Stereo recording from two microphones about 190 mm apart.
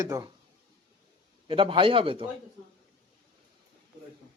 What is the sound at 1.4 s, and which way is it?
Speech, 25° right (ahead or behind).